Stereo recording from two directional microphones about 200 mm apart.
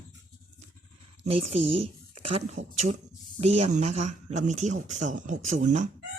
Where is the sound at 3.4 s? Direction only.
30° right (ahead or behind).